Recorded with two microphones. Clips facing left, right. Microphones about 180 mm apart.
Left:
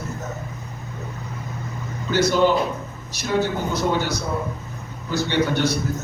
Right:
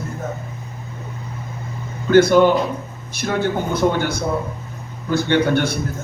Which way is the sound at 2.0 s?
55° right (ahead or behind).